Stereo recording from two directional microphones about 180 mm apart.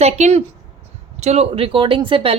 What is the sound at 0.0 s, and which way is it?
Speech, 35° right (ahead or behind).